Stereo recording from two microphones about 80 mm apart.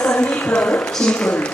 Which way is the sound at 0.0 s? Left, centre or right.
Centre.